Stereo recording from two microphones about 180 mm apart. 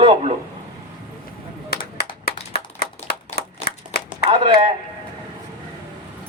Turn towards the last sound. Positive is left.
turn(degrees=-30)  # may be behind; listen again after turning